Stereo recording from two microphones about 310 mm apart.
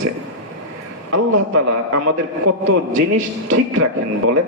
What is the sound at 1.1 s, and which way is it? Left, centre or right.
A man's voice, right.